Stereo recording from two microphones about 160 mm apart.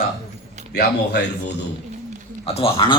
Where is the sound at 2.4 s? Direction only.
40° left (ahead or behind).